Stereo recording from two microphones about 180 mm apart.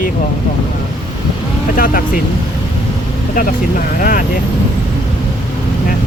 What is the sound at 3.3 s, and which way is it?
Speech, 50° left (ahead or behind).